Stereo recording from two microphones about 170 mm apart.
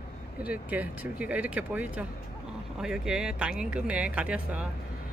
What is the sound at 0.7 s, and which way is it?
Speech, 10° right (ahead or behind).